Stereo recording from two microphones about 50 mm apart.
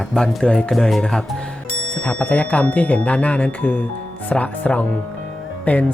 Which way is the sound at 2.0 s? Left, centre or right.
Left.